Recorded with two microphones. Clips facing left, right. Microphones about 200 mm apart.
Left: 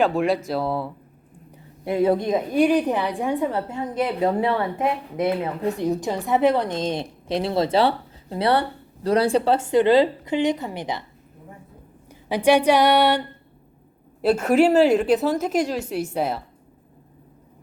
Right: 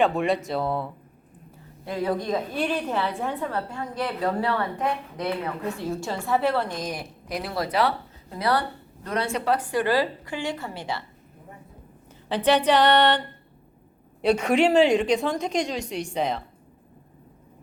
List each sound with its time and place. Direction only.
0.0 s a woman's voice: centre (ahead or behind)
1.8 s a woman's voice: 25° left (ahead or behind)
12.3 s music: 10° left (ahead or behind)
14.2 s a woman's voice: 5° left (ahead or behind)